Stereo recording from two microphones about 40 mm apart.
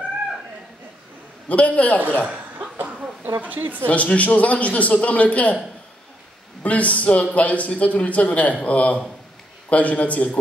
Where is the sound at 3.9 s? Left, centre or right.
Left.